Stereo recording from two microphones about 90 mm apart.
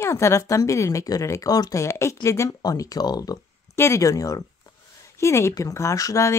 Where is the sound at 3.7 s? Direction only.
30° left (ahead or behind).